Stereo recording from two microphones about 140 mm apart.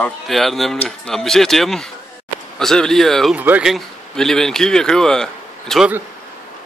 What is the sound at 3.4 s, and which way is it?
Speech, 10° right (ahead or behind).